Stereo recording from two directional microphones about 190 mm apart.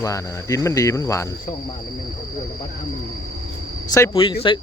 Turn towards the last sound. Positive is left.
turn(degrees=25)  # may be behind; listen again after turning